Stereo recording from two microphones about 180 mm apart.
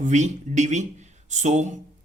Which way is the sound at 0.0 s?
40° right (ahead or behind).